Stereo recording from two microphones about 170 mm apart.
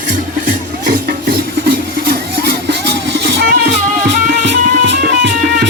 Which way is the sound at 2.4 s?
90° right.